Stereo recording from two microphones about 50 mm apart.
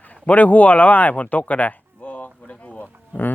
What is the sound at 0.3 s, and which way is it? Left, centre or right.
Speech, left.